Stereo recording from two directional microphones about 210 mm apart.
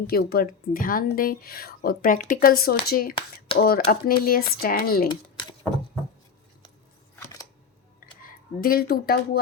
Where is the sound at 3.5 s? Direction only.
45° left (ahead or behind).